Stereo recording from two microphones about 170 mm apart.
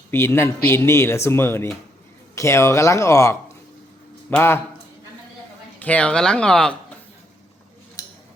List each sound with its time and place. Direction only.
0.1 s speech: 15° left (ahead or behind)
5.8 s speech: 5° left (ahead or behind)
8.0 s scissors: 20° left (ahead or behind)